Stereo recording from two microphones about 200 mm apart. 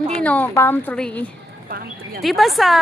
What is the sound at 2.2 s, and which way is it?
Speech, centre (ahead or behind).